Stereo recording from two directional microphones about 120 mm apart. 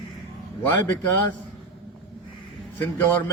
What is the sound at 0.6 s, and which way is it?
Speech, 15° left (ahead or behind).